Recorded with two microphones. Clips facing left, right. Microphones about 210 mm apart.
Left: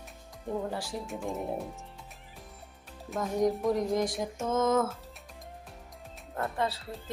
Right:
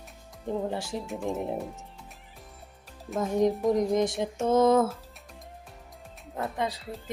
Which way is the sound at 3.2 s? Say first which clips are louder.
Right 3 dB; 25° right (ahead or behind).